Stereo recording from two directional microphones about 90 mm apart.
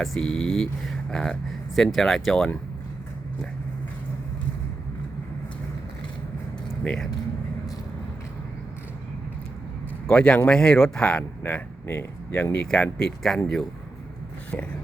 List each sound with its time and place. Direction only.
0.0 s speech: 5° left (ahead or behind)
6.8 s speech: 10° left (ahead or behind)
10.1 s speech: 10° left (ahead or behind)
12.5 s speech: 10° left (ahead or behind)
14.5 s a sound: 20° left (ahead or behind)